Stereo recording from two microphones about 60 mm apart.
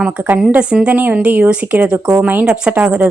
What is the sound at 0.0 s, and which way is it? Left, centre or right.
A woman's voice, centre.